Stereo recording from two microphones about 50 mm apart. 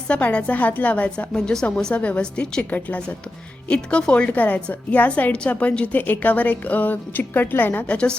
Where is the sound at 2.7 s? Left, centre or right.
Left.